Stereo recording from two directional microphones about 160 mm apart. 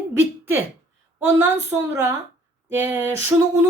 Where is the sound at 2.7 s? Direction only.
15° right (ahead or behind).